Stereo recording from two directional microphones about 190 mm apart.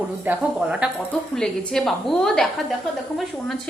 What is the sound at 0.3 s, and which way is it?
Speech, 5° right (ahead or behind).